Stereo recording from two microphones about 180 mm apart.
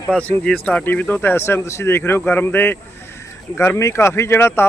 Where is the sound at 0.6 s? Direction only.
5° left (ahead or behind).